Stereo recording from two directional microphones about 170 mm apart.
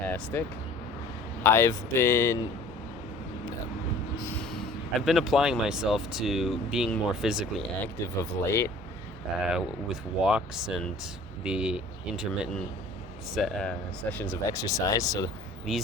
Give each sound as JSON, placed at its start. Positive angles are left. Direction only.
{"t": 0.1, "sound": "speech", "side_deg": 10}
{"t": 1.5, "sound": "speech", "side_deg": 15}
{"t": 4.9, "sound": "speech", "side_deg": 0}
{"t": 8.0, "sound": "speech", "side_deg": 15}
{"t": 9.5, "sound": "speech", "side_deg": -5}
{"t": 13.3, "sound": "speech", "side_deg": 0}
{"t": 15.7, "sound": "speech", "side_deg": 0}